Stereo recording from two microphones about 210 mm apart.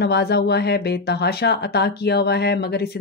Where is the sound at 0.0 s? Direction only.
50° left (ahead or behind).